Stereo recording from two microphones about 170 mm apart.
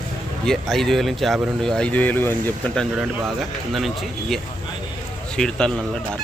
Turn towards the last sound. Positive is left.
turn(degrees=5)  # may be behind; listen again after turning